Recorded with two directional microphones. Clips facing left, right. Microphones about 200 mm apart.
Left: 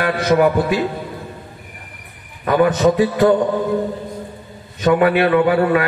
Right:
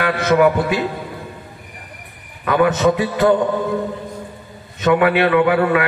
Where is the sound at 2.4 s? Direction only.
35° left (ahead or behind).